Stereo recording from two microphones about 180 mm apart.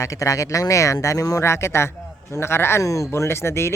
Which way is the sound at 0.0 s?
20° left (ahead or behind).